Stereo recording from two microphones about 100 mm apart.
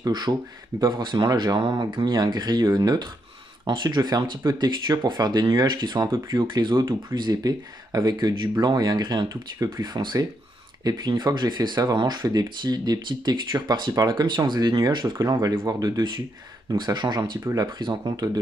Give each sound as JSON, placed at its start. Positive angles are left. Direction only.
{"t": 0.0, "sound": "speech", "side_deg": -45}
{"t": 16.7, "sound": "speech", "side_deg": -50}